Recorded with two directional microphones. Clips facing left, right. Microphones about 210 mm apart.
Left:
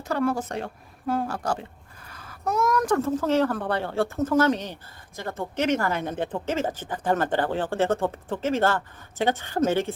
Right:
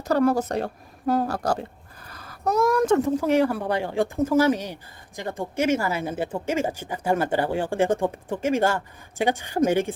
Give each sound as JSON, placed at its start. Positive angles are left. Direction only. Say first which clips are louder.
{"t": 0.0, "sound": "speech", "louder": "right 5 dB", "side_deg": -40}